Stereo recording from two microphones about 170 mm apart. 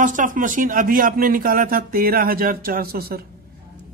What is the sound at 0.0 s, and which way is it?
Speech, 50° right (ahead or behind).